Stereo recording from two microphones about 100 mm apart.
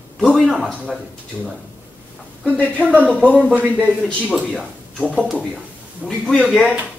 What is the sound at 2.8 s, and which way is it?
A man's voice, 15° right (ahead or behind).